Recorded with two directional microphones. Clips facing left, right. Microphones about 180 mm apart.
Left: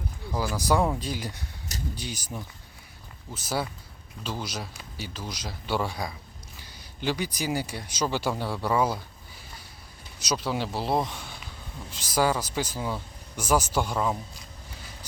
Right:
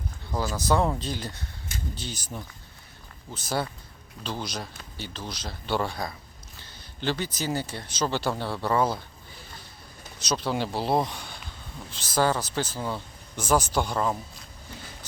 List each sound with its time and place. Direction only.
0.3 s speech: 10° left (ahead or behind)
10.2 s speech: 5° left (ahead or behind)